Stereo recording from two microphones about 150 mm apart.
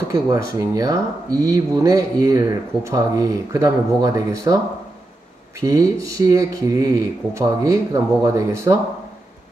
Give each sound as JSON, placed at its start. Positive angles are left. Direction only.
{"t": 0.1, "sound": "speech", "side_deg": -20}
{"t": 5.6, "sound": "speech", "side_deg": -20}